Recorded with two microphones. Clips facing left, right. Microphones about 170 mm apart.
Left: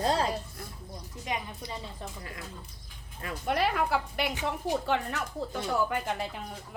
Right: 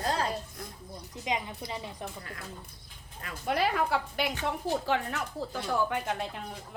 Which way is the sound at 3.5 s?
Centre (ahead or behind).